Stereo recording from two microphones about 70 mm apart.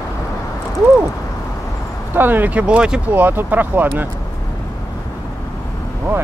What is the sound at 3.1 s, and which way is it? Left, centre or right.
Speech, right.